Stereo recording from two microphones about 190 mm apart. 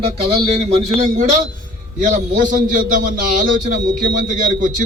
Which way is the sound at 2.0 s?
45° right (ahead or behind).